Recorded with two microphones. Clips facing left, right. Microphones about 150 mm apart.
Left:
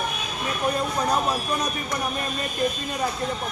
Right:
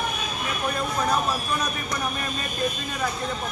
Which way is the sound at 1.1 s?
15° left (ahead or behind).